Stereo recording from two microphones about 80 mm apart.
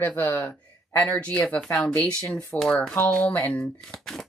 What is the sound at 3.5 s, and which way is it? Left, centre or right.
Speech, centre.